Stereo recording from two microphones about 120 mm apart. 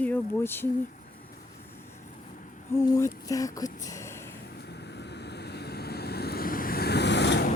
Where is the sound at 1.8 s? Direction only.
80° left.